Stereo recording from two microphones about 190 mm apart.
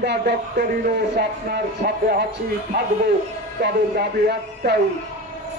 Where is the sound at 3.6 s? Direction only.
55° right (ahead or behind).